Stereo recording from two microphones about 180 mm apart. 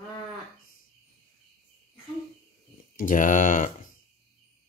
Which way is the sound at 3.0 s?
45° left (ahead or behind).